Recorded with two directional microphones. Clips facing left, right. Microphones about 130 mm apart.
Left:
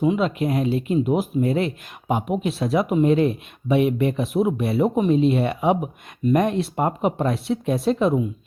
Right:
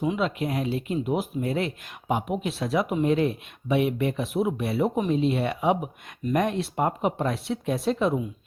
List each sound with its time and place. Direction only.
0.0 s speech: 30° left (ahead or behind)
2.6 s speech: 25° left (ahead or behind)